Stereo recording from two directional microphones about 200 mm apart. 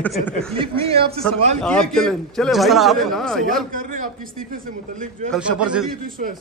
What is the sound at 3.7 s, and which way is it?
Speech, 45° right (ahead or behind).